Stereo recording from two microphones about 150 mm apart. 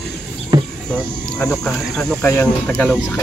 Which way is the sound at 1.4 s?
5° left (ahead or behind).